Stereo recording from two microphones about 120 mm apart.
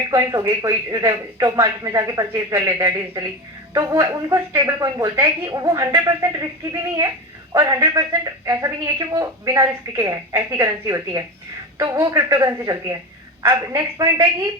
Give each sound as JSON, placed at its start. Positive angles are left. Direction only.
{"t": 0.1, "sound": "a woman's voice", "side_deg": -25}
{"t": 7.5, "sound": "a woman's voice", "side_deg": -30}